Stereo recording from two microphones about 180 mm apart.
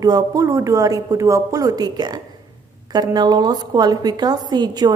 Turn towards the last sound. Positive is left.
turn(degrees=-25)  # may be behind; listen again after turning